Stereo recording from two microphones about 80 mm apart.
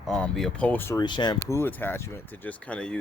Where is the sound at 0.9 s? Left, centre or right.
Left.